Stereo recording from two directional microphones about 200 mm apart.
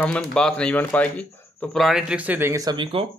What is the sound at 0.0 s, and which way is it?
Speech, 5° left (ahead or behind).